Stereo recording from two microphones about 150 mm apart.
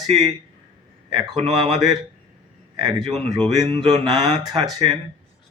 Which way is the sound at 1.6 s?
30° right (ahead or behind).